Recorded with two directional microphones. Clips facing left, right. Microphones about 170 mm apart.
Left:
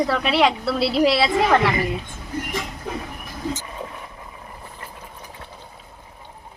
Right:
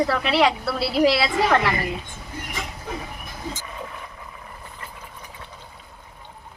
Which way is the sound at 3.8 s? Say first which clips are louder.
Left 2 dB; 25° left (ahead or behind).